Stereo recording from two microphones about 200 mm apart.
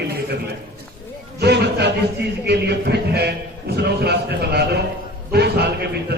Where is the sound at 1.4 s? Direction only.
55° right (ahead or behind).